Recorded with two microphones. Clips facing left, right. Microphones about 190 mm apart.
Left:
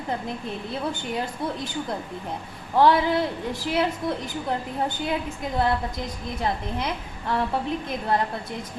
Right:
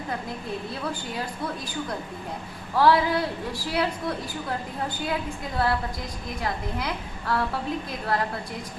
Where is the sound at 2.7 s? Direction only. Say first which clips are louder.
Left 1 dB; 20° left (ahead or behind).